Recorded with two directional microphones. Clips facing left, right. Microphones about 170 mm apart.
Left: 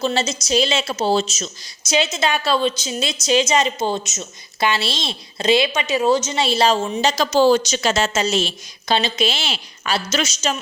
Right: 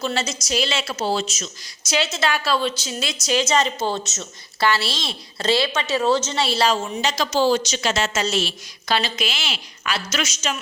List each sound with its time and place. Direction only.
0.0 s a woman's voice: 25° left (ahead or behind)
7.0 s speech: 35° left (ahead or behind)
7.3 s speech: 50° left (ahead or behind)
8.1 s a woman's voice: 20° left (ahead or behind)